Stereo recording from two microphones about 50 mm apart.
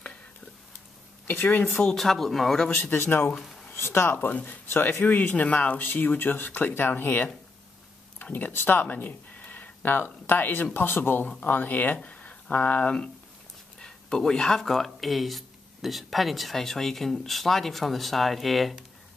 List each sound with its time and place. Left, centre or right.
1.2 s speech: left
1.8 s speech: centre
2.7 s speech: left
3.3 s a sound: centre
3.7 s speech: left
5.9 s speech: left
11.2 s speech: left
11.5 s speech: left; by 18.8 s centre